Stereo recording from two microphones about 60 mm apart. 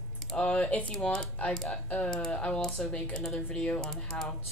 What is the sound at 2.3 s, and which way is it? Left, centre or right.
Speech, left.